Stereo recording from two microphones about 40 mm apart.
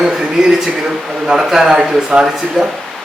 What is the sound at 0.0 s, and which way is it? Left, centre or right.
A man's voice, centre.